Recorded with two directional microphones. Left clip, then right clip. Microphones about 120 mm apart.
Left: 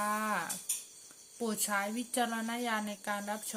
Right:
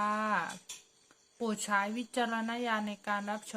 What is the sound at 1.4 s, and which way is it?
A woman's voice, 20° right (ahead or behind).